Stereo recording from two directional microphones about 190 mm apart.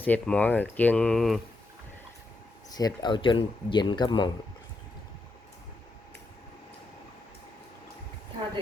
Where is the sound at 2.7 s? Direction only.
20° left (ahead or behind).